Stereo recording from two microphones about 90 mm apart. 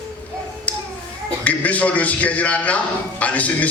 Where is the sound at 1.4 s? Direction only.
15° left (ahead or behind).